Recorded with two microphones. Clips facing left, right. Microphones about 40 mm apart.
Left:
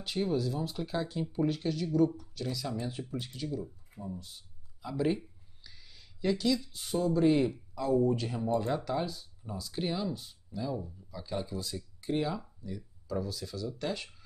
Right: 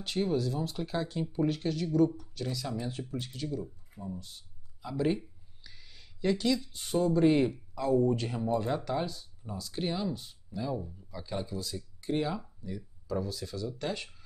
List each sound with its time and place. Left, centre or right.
0.0 s speech: centre
10.5 s speech: centre
11.4 s speech: centre
12.1 s speech: centre